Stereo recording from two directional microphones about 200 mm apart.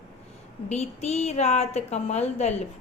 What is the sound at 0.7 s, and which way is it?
A woman's voice, 35° left (ahead or behind).